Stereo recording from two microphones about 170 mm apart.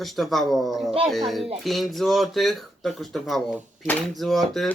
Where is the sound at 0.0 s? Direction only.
Centre (ahead or behind).